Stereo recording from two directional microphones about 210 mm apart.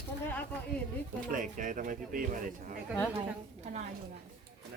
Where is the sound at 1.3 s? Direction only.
40° right (ahead or behind).